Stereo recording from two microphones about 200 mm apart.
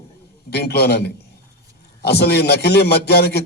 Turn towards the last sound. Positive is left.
turn(degrees=55)  # may be behind; listen again after turning